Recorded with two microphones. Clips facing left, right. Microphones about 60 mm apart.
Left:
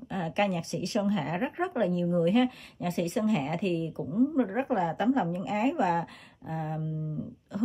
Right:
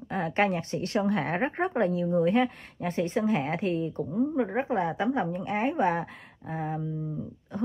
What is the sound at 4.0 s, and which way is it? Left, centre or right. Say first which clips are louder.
A woman's voice: left 3 dB; centre.